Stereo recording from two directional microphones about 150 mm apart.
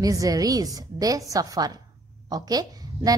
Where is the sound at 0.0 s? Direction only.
25° right (ahead or behind).